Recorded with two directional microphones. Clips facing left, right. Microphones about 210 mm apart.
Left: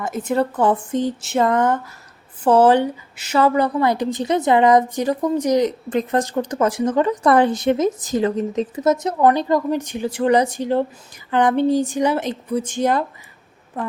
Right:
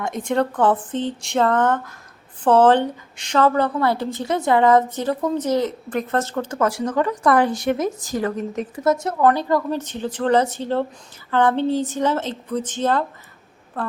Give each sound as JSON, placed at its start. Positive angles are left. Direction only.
{"t": 0.0, "sound": "a woman's voice", "side_deg": 5}